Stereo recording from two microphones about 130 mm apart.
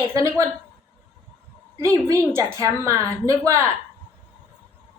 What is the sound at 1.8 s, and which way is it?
Speech, 25° right (ahead or behind).